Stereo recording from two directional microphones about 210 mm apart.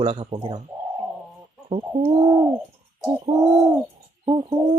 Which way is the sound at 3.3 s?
30° right (ahead or behind).